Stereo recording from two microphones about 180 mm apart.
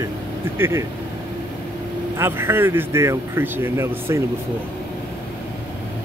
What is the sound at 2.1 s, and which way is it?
Speech, 15° right (ahead or behind).